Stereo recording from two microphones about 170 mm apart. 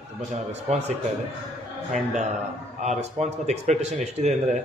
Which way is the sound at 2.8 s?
40° right (ahead or behind).